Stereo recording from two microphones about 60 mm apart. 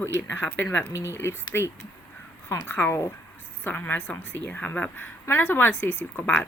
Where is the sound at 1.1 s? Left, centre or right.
Left.